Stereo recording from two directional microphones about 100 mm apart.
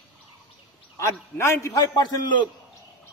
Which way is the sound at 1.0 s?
30° left (ahead or behind).